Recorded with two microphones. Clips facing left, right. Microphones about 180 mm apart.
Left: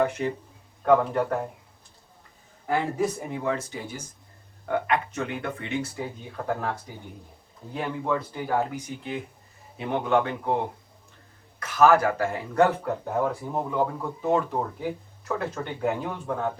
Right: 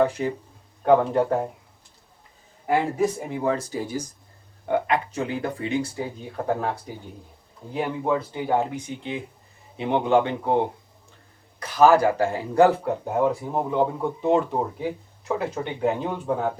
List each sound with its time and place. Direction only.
0.0 s a man's voice: 30° right (ahead or behind)
2.6 s speech: 20° right (ahead or behind)
4.6 s speech: 30° right (ahead or behind)
7.9 s speech: 20° right (ahead or behind)
16.3 s speech: 5° right (ahead or behind)